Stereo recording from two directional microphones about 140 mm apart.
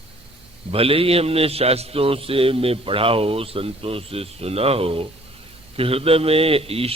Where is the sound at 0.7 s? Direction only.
45° right (ahead or behind).